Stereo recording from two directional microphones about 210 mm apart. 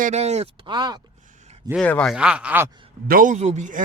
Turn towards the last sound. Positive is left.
turn(degrees=-35)  # may be behind; listen again after turning